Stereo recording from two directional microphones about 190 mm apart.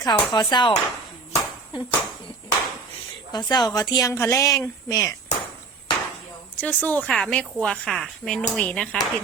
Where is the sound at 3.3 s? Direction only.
20° left (ahead or behind).